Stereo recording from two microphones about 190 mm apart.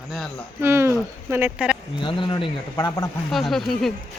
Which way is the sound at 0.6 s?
15° right (ahead or behind).